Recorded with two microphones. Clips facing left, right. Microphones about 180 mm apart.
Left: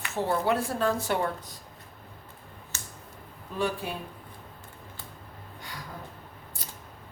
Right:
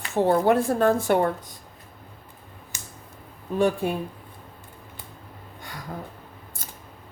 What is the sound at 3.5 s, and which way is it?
Speech, 50° right (ahead or behind).